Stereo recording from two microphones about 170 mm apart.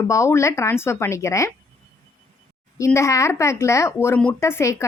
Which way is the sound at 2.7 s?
15° left (ahead or behind).